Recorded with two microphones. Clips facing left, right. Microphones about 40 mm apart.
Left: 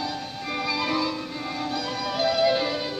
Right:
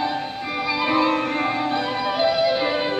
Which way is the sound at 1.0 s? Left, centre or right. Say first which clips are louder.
Right 9 dB; right.